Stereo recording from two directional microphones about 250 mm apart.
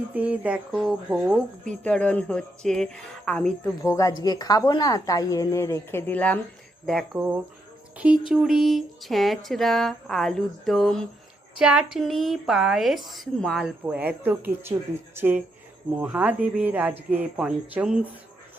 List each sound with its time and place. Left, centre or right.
0.1 s a woman's voice: centre
6.8 s a woman's voice: centre